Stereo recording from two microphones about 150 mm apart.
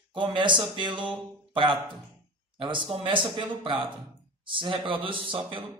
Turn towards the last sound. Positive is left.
turn(degrees=-35)  # may be behind; listen again after turning